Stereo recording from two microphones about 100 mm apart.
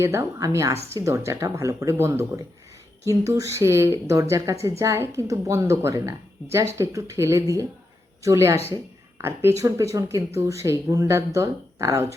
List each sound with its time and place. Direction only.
0.0 s speech: 30° right (ahead or behind)